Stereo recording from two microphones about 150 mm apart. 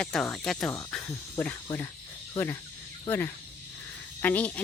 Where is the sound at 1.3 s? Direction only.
10° left (ahead or behind).